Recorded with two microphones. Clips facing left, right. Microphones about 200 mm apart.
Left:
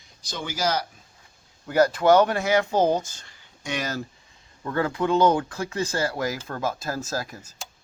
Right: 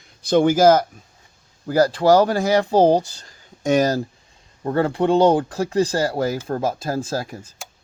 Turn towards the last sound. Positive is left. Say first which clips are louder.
# right 5 dB
turn(degrees=-30)  # may be behind; listen again after turning